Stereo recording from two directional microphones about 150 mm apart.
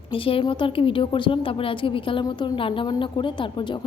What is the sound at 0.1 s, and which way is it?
A woman's voice, 35° left (ahead or behind).